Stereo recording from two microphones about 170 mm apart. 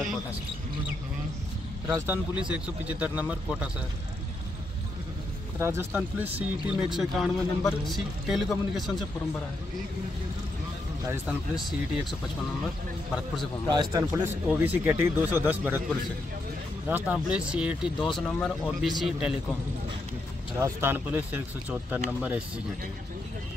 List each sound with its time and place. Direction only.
1.9 s speech: 15° right (ahead or behind)
5.6 s a man's voice: 15° right (ahead or behind)
11.1 s a man's voice: 5° right (ahead or behind)
13.7 s a man's voice: 25° right (ahead or behind)
14.1 s speech: 10° right (ahead or behind)
16.8 s a man's voice: 10° right (ahead or behind)
20.5 s speech: 15° right (ahead or behind)